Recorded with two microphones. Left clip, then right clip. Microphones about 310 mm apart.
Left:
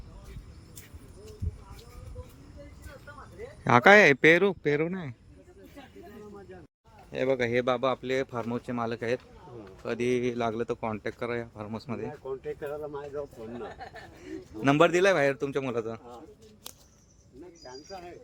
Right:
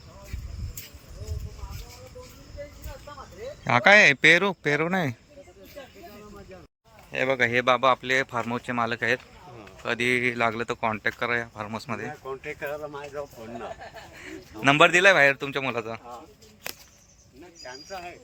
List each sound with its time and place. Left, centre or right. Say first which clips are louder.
3.6 s a man's voice: right 1 dB; centre
7.1 s speech: right 4 dB; centre
17.7 s speech: right 6 dB; centre